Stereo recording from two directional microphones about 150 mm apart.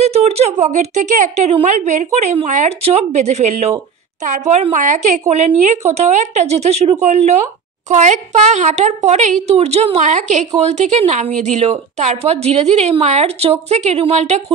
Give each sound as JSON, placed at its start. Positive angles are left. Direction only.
{"t": 0.0, "sound": "a woman's voice", "side_deg": -45}